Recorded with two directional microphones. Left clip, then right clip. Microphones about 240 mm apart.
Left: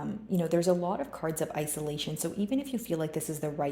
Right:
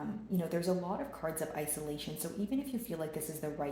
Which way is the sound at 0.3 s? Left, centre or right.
Left.